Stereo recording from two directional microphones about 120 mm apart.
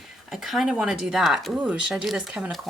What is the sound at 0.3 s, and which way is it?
Speech, 5° right (ahead or behind).